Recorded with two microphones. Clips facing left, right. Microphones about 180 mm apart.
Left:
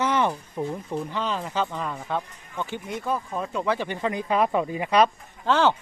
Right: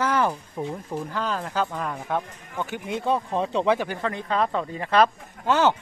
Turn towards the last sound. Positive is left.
turn(degrees=-10)  # may be behind; listen again after turning